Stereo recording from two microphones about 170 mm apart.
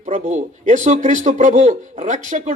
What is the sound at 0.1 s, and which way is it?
Speech, 50° right (ahead or behind).